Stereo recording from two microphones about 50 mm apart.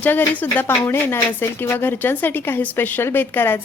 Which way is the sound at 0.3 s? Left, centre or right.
Left.